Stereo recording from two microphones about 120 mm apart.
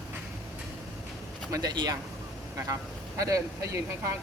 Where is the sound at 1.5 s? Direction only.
35° right (ahead or behind).